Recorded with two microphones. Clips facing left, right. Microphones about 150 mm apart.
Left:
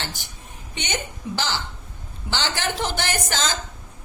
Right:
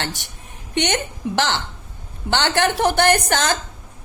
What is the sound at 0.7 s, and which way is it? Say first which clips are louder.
A woman's voice: right 8 dB; 70° right (ahead or behind).